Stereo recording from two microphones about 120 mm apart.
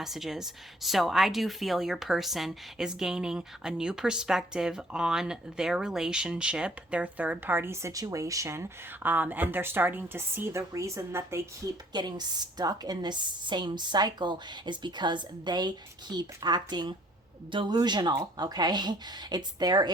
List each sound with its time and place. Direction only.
0.0 s speech: 5° right (ahead or behind); by 11.7 s 20° right (ahead or behind)
11.9 s a woman's voice: 35° right (ahead or behind)